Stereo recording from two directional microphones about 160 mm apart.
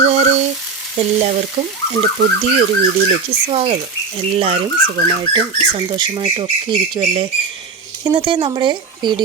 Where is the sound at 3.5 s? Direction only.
40° right (ahead or behind).